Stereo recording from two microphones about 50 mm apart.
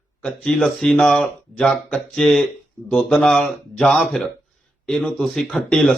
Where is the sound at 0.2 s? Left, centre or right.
Centre.